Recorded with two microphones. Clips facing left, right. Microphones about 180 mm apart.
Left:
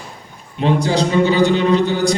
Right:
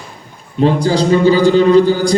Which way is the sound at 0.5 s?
35° right (ahead or behind).